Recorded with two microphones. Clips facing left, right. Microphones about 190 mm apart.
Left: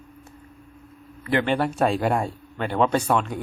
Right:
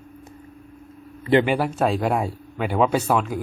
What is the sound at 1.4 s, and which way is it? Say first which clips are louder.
Speech: right 1 dB; 10° right (ahead or behind).